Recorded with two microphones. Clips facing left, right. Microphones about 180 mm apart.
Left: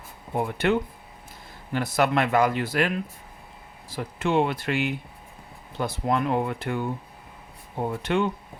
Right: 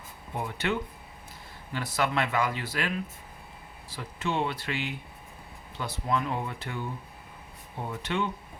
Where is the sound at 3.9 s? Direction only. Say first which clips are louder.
Left 7 dB; 50° left (ahead or behind).